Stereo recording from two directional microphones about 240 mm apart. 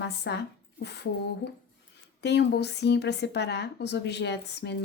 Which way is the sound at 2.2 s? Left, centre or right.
Left.